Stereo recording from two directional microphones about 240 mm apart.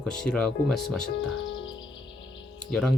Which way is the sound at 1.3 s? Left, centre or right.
Left.